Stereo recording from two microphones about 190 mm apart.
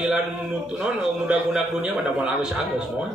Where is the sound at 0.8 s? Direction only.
5° right (ahead or behind).